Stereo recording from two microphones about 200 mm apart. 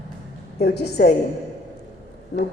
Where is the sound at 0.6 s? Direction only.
55° left (ahead or behind).